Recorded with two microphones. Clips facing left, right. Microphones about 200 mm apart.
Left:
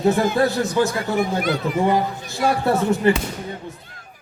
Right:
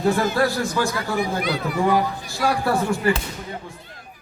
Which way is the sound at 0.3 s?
20° left (ahead or behind).